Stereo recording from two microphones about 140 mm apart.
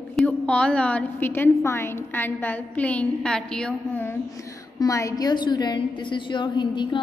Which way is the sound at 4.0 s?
20° left (ahead or behind).